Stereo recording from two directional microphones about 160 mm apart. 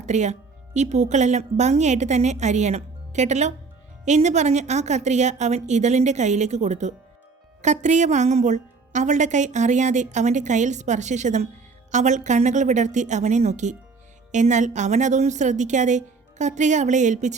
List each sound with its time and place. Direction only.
0.0 s a woman's voice: 45° right (ahead or behind)